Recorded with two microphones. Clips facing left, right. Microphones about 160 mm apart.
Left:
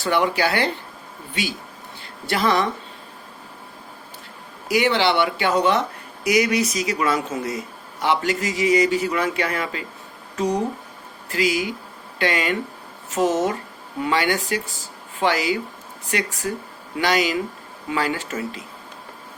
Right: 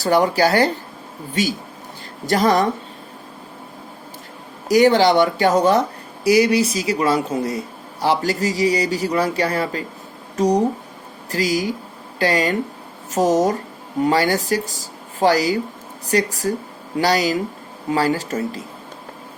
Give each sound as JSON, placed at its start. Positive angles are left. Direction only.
{"t": 0.0, "sound": "speech", "side_deg": -40}
{"t": 4.7, "sound": "speech", "side_deg": -40}